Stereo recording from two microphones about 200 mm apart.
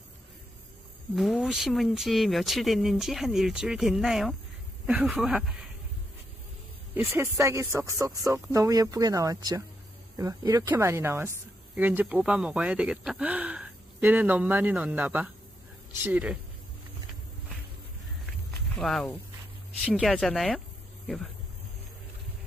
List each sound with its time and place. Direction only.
1.1 s speech: centre (ahead or behind)
6.9 s a woman's voice: 10° right (ahead or behind)
18.5 s a sound: centre (ahead or behind)
19.8 s speech: centre (ahead or behind)